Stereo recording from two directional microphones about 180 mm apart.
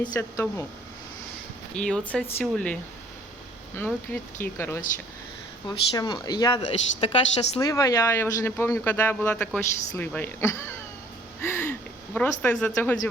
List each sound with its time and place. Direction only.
0.0 s speech: 10° left (ahead or behind)
1.7 s speech: 5° left (ahead or behind)
3.8 s speech: 10° left (ahead or behind)
6.6 s a woman's voice: 35° left (ahead or behind)
7.6 s speech: 20° left (ahead or behind)
11.3 s a sound: 10° left (ahead or behind)
12.1 s speech: 10° left (ahead or behind)